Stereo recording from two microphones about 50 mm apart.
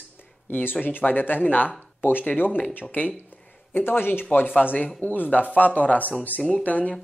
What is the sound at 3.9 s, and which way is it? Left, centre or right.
Speech, left.